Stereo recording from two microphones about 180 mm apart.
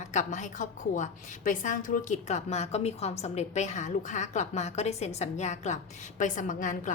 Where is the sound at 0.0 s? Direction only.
40° left (ahead or behind).